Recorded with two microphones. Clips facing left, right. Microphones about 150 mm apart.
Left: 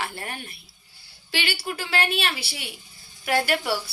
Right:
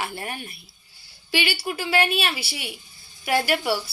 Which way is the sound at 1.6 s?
10° right (ahead or behind).